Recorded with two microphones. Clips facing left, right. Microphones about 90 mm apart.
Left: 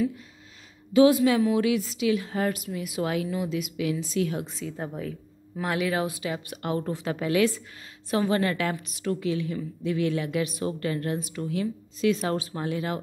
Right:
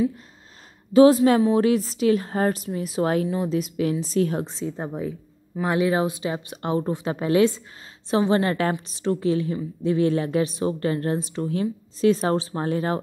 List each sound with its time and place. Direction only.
0.9 s a woman's voice: 35° right (ahead or behind)